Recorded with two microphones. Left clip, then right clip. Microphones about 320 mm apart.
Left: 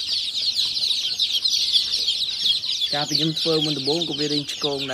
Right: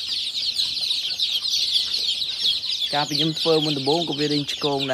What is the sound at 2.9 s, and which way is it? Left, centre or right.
Speech, centre.